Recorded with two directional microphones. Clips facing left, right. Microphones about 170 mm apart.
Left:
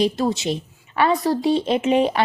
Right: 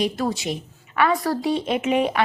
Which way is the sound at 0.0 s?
25° left (ahead or behind).